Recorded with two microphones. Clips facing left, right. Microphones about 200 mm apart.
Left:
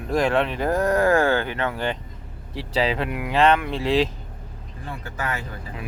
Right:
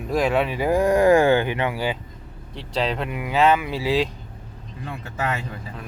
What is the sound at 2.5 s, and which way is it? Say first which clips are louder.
Speech: left 2 dB; 5° left (ahead or behind).